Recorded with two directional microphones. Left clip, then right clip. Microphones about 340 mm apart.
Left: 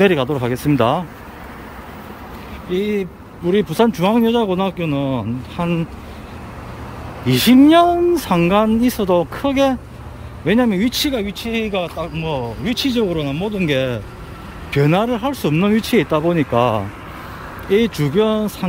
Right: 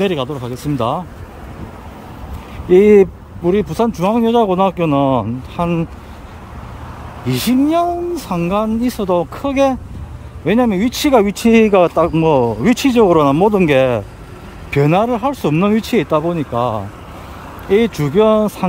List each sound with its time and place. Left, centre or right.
0.0 s speech: centre
2.7 s speech: centre
7.2 s speech: centre
12.2 s speech: right
12.6 s speech: centre